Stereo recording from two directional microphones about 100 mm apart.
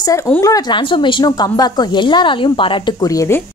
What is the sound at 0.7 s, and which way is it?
A woman's voice, 55° left (ahead or behind).